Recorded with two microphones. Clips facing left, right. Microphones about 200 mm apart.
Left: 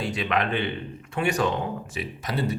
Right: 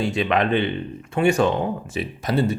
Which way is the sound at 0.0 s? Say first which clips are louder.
Right 5 dB; 25° right (ahead or behind).